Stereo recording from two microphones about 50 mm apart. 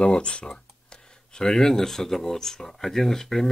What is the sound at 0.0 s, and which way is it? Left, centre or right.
Speech, centre.